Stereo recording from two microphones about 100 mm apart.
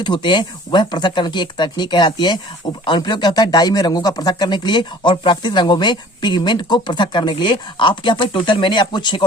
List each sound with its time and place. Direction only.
0.0 s speech: 50° left (ahead or behind)